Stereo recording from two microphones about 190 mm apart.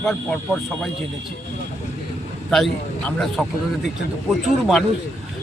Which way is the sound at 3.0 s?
5° left (ahead or behind).